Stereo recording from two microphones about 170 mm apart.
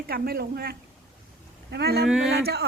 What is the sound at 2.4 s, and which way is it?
Speech, 75° right (ahead or behind).